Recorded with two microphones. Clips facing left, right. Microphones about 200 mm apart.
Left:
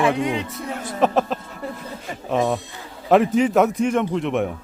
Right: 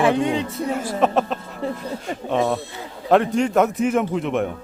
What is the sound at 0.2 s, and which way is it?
Speech, 30° right (ahead or behind).